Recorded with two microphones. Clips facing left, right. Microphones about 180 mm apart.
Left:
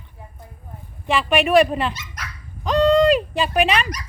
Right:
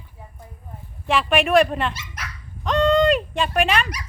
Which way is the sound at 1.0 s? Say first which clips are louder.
Left 1 dB; centre (ahead or behind).